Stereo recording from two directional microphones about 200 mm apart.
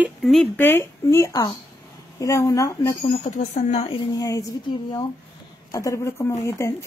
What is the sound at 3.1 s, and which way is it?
A woman's voice, 35° left (ahead or behind).